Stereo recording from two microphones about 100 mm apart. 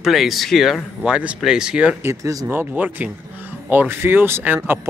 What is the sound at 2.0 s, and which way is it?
Speech, 30° right (ahead or behind).